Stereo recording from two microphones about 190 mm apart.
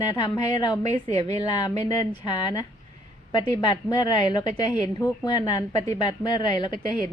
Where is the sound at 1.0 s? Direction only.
35° right (ahead or behind).